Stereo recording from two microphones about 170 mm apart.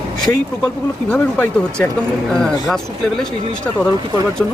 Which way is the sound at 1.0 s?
10° left (ahead or behind).